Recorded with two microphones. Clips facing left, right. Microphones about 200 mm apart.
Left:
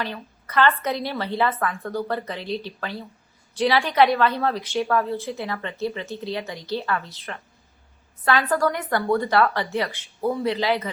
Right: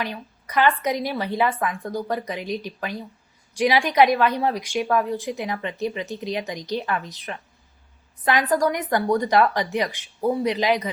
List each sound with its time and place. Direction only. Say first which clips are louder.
0.0 s a woman's voice: right 1 dB; 15° right (ahead or behind)